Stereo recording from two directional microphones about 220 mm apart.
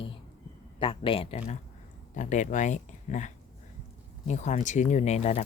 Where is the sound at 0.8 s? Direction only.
25° left (ahead or behind).